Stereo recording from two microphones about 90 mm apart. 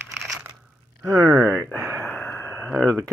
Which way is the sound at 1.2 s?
30° right (ahead or behind).